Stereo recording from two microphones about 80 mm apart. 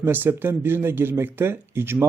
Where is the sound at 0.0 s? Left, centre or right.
Right.